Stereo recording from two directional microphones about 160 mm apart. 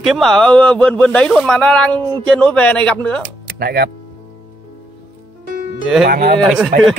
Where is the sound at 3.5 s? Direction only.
80° right.